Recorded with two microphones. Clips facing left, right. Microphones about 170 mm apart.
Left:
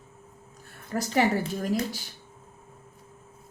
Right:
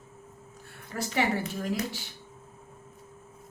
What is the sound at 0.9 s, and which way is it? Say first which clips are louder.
A woman's voice: left 4 dB; 40° left (ahead or behind).